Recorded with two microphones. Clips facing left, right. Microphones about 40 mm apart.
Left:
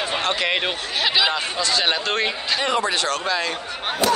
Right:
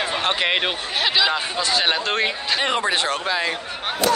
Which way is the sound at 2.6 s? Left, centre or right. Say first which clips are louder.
Even; right.